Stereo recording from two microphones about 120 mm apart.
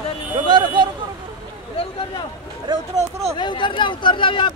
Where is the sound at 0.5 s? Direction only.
40° right (ahead or behind).